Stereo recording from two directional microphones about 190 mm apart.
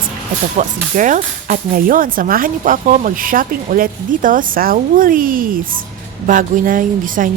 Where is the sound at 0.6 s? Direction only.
40° right (ahead or behind).